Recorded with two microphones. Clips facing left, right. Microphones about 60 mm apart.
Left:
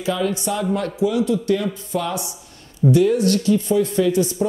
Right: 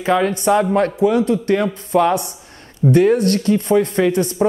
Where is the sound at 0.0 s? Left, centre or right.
Right.